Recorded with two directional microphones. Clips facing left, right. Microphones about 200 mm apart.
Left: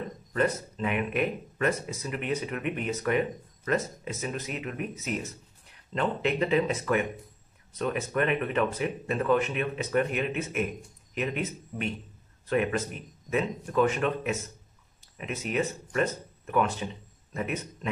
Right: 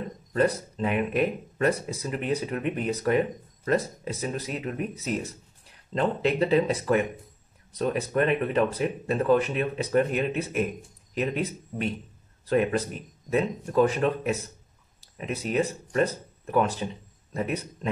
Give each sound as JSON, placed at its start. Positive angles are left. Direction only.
{"t": 0.3, "sound": "speech", "side_deg": -35}